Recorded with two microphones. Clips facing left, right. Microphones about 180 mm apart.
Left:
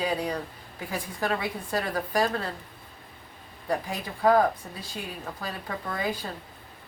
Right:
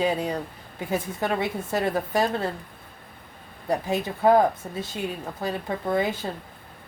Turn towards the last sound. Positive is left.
turn(degrees=-25)  # may be behind; listen again after turning